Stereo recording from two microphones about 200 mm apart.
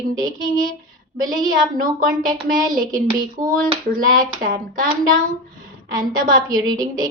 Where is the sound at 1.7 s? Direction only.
45° right (ahead or behind).